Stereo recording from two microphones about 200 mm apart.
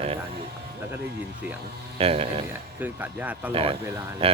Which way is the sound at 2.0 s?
30° right (ahead or behind).